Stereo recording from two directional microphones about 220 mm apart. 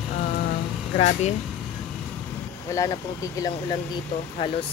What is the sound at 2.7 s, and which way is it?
Speech, 15° left (ahead or behind).